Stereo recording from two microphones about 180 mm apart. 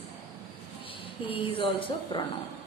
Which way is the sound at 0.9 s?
30° left (ahead or behind).